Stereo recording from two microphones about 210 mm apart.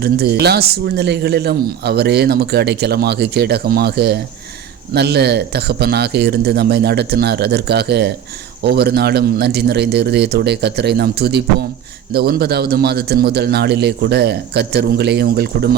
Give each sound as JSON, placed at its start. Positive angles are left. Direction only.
{"t": 0.0, "sound": "speech", "side_deg": -50}